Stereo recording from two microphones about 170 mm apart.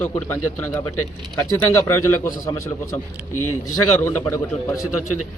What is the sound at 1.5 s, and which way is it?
Speech, 20° left (ahead or behind).